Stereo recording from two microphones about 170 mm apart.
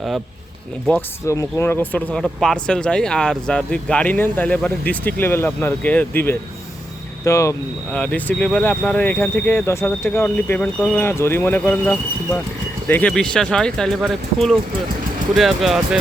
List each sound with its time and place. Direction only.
1.2 s speech: 15° left (ahead or behind); by 16.0 s centre (ahead or behind)